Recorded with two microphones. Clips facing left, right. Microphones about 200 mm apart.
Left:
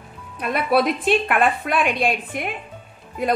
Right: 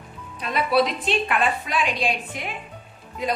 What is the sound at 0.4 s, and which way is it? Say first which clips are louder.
A woman's voice: left 2 dB; 55° left (ahead or behind).